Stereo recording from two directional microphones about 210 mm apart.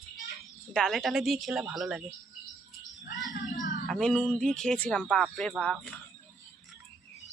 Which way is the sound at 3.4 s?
40° left (ahead or behind).